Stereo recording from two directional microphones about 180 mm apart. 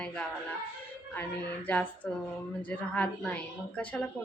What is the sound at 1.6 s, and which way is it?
A woman's voice, 10° left (ahead or behind).